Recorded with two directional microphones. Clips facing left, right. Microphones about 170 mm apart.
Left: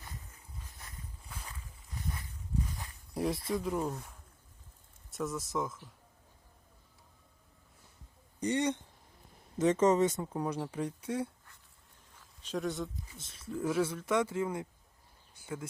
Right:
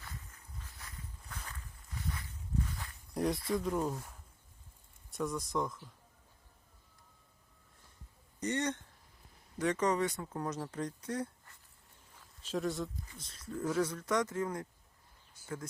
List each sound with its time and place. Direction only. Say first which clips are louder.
0.0 s a sound: left 1 dB; 15° left (ahead or behind)
2.6 s walk: left 1 dB; 15° left (ahead or behind)
3.2 s speech: even; centre (ahead or behind)
8.4 s speech: left 4 dB; 10° left (ahead or behind)
9.6 s speech: left 5 dB; 25° left (ahead or behind)
12.1 s a sound: even; 5° right (ahead or behind)
13.5 s speech: left 2 dB; 10° left (ahead or behind)